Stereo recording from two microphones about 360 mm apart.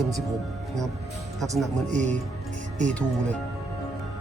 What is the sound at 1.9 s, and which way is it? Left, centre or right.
Speech, centre.